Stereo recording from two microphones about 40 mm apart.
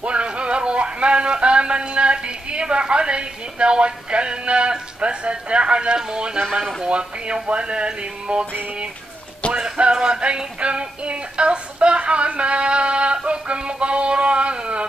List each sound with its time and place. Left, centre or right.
0.0 s music: right
9.5 s music: right